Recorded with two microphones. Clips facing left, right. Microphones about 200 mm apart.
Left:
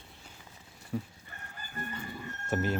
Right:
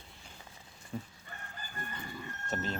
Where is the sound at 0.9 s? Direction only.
5° left (ahead or behind).